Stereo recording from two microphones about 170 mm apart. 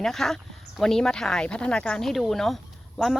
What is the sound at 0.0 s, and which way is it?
Speech, centre (ahead or behind).